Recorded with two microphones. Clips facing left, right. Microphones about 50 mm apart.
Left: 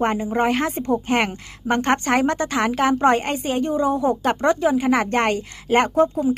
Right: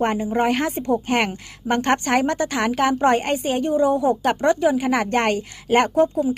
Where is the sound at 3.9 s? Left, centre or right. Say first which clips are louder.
Right 1 dB; left.